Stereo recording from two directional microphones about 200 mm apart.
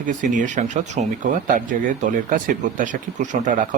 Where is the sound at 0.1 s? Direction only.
40° right (ahead or behind).